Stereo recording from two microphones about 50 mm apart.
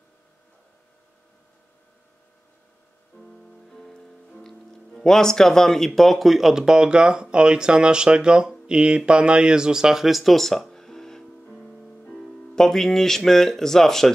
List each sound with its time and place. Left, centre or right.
3.7 s music: centre
5.9 s speech: centre
11.5 s music: left
12.2 s speech: centre